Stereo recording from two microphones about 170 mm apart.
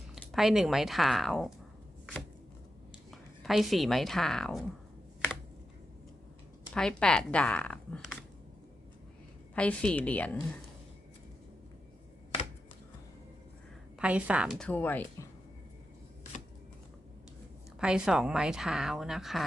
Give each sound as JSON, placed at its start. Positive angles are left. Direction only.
{"t": 0.3, "sound": "speech", "side_deg": 0}
{"t": 3.1, "sound": "a woman's voice", "side_deg": 0}
{"t": 6.7, "sound": "speech", "side_deg": 5}
{"t": 9.6, "sound": "a woman's voice", "side_deg": 10}
{"t": 14.0, "sound": "a woman's voice", "side_deg": -5}
{"t": 14.6, "sound": "a woman's voice", "side_deg": 10}
{"t": 17.7, "sound": "speech", "side_deg": -5}